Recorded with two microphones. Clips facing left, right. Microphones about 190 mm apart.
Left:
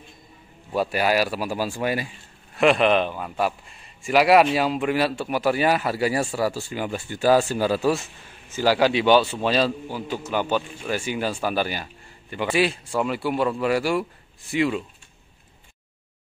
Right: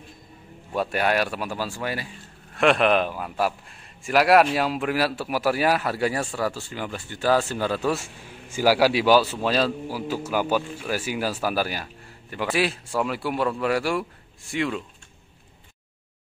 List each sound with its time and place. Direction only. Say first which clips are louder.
0.7 s speech: left 2 dB; 5° left (ahead or behind)
2.5 s speech: left 1 dB; centre (ahead or behind)
7.9 s speech: left 2 dB; 10° right (ahead or behind)